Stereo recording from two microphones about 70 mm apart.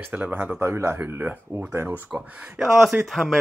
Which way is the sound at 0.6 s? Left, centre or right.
Right.